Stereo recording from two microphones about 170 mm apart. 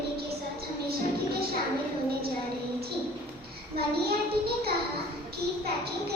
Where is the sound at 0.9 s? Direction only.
65° right (ahead or behind).